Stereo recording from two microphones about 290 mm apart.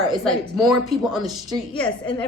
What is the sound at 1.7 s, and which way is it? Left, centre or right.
Speech, centre.